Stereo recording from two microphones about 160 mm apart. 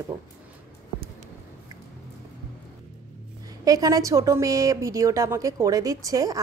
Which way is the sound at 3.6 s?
20° right (ahead or behind).